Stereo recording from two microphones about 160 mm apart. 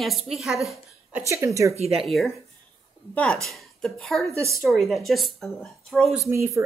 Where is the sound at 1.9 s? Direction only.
Centre (ahead or behind).